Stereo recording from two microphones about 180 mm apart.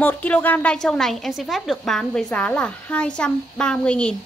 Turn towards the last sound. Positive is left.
turn(degrees=5)  # may be behind; listen again after turning